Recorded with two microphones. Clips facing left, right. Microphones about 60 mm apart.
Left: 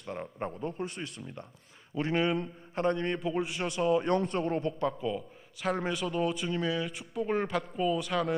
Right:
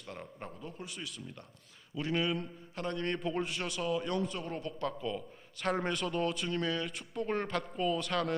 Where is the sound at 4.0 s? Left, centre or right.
Left.